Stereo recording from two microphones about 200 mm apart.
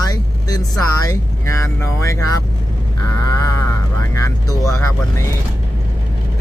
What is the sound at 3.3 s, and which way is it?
Vehicle, 15° left (ahead or behind).